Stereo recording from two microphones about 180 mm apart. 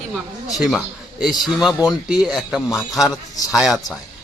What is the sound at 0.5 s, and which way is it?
Speech, centre (ahead or behind).